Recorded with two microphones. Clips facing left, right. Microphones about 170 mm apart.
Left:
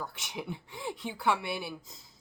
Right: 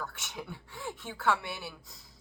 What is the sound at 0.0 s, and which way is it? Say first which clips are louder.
Speech: left 2 dB; 15° left (ahead or behind).